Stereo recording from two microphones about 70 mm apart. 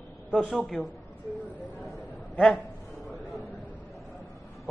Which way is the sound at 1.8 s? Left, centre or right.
Centre.